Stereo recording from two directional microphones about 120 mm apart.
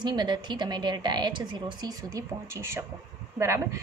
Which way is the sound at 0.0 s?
35° right (ahead or behind).